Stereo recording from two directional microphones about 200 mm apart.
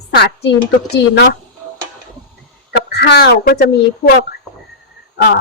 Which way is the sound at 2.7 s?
55° left (ahead or behind).